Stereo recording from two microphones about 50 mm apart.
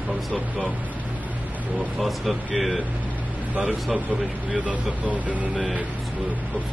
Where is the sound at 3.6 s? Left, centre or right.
Centre.